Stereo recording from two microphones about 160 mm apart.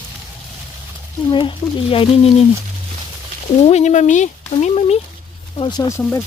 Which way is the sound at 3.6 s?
45° left (ahead or behind).